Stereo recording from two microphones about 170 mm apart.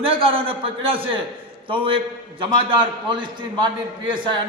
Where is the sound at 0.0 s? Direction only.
35° right (ahead or behind).